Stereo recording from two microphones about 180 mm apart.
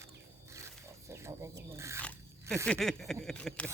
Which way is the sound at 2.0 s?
5° left (ahead or behind).